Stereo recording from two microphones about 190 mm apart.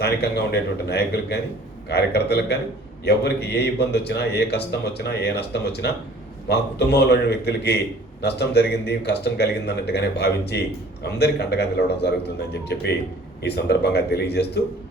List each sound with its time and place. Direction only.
0.0 s a man's voice: 60° left (ahead or behind)